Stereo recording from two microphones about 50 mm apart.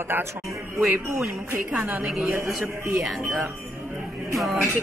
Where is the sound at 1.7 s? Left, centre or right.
Centre.